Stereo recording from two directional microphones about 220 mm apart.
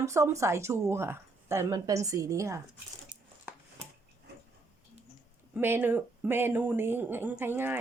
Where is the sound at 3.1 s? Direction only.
20° right (ahead or behind).